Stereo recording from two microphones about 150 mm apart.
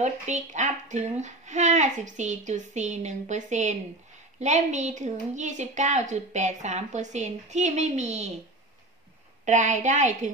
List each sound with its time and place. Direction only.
0.0 s speech: 50° right (ahead or behind)
9.4 s speech: 55° right (ahead or behind)